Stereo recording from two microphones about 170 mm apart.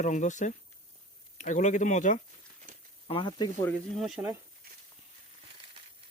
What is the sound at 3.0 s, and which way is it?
Speech, 30° left (ahead or behind).